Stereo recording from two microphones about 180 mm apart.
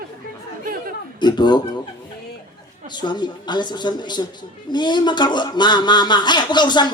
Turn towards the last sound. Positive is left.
turn(degrees=25)  # may be behind; listen again after turning